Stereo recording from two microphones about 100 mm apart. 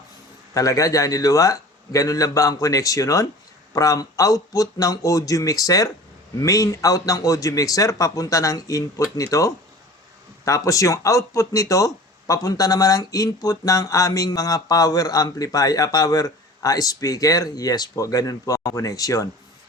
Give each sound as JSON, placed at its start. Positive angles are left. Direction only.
{"t": 0.5, "sound": "speech", "side_deg": 35}